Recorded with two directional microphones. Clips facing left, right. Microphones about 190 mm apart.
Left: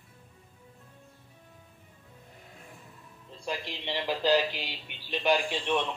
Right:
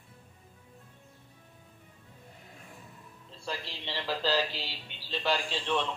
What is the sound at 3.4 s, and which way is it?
A man's voice, 15° left (ahead or behind).